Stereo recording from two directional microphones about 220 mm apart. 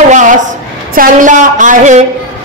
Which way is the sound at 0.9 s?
35° right (ahead or behind).